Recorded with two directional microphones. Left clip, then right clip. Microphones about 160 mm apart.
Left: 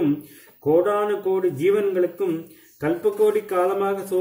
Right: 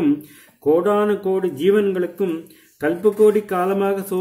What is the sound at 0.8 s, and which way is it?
Speech, 25° right (ahead or behind).